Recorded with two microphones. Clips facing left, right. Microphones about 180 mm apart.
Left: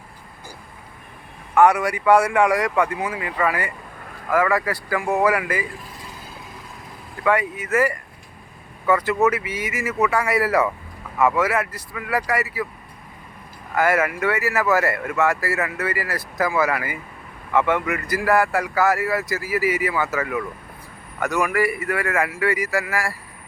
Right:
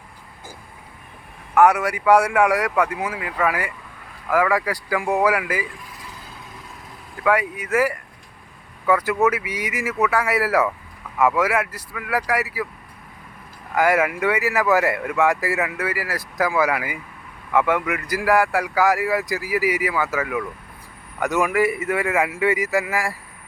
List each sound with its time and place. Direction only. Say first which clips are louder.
1.5 s speech: even; 10° right (ahead or behind)
7.3 s speech: even; 10° right (ahead or behind)
13.7 s speech: right 1 dB; 15° right (ahead or behind)
21.2 s a man's voice: right 2 dB; 20° right (ahead or behind)